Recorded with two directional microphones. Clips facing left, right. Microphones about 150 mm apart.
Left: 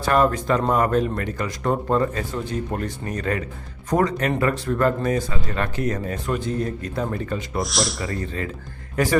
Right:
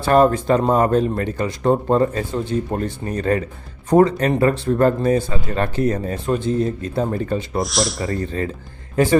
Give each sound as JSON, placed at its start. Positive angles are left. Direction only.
{"t": 0.0, "sound": "speech", "side_deg": -30}
{"t": 7.6, "sound": "speech", "side_deg": 0}
{"t": 8.1, "sound": "speech", "side_deg": -30}